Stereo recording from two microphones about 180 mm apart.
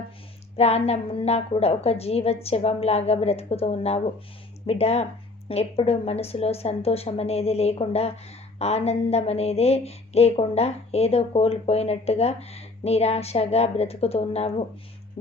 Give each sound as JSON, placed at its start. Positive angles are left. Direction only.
{"t": 0.5, "sound": "speech", "side_deg": 35}